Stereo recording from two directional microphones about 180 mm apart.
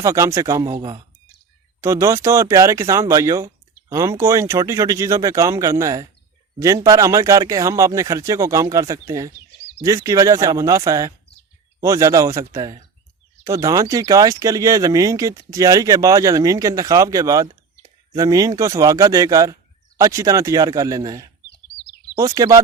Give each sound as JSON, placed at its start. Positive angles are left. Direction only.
{"t": 0.0, "sound": "speech", "side_deg": -15}